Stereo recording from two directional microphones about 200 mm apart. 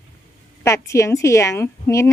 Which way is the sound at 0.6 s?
15° left (ahead or behind).